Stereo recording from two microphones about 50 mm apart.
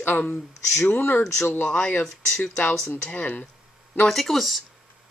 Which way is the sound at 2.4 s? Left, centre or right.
Left.